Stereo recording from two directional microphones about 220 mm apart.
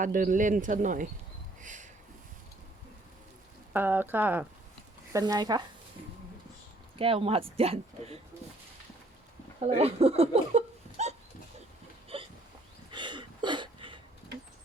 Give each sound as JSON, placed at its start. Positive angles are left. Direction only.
{"t": 0.0, "sound": "speech", "side_deg": -35}
{"t": 1.6, "sound": "a sound", "side_deg": -35}
{"t": 3.7, "sound": "speech", "side_deg": -10}
{"t": 6.9, "sound": "speech", "side_deg": -25}
{"t": 9.6, "sound": "speech", "side_deg": -25}
{"t": 12.1, "sound": "hiccup", "side_deg": -25}
{"t": 12.9, "sound": "a sound", "side_deg": -20}